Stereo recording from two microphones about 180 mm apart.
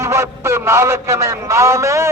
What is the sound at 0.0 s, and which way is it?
Speech, 15° right (ahead or behind).